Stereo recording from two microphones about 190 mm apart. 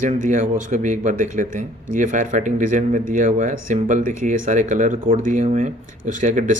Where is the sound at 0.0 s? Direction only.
40° right (ahead or behind).